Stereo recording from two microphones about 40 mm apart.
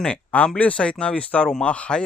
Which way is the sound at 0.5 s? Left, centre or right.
Left.